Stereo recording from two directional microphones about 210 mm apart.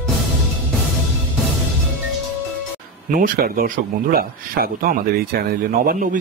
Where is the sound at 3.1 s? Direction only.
40° right (ahead or behind).